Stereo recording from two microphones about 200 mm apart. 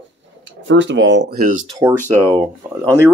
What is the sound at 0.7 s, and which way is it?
Speech, 65° right (ahead or behind).